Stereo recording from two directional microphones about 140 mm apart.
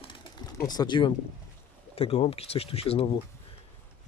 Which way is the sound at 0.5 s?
30° left (ahead or behind).